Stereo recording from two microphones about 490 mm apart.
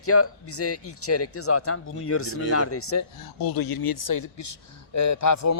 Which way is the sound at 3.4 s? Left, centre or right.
Left.